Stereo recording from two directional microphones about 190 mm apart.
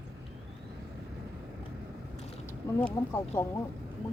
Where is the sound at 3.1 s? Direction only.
15° left (ahead or behind).